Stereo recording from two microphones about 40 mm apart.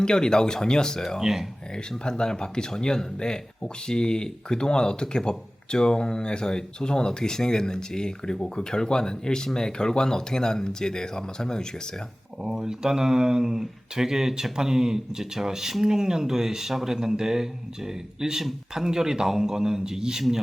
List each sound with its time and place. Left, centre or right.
0.0 s speech: centre
1.2 s speech: centre
1.7 s speech: centre
12.4 s speech: centre